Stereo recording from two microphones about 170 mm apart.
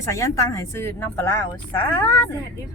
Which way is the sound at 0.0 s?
20° left (ahead or behind).